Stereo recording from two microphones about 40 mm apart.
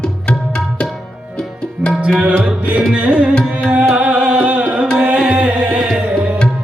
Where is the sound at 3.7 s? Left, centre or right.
Right.